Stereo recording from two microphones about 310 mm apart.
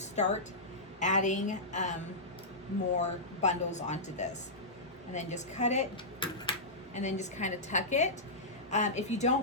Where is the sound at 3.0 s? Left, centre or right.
Left.